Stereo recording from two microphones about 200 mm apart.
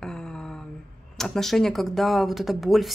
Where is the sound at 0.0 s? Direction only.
5° left (ahead or behind).